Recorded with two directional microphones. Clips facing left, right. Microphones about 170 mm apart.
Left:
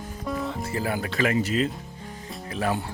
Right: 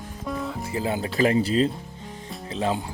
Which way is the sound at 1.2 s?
30° right (ahead or behind).